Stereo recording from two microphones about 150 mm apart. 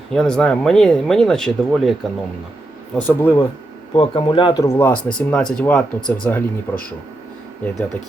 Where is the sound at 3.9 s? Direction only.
35° left (ahead or behind).